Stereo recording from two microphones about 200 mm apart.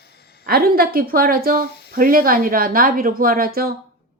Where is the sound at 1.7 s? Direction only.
55° left (ahead or behind).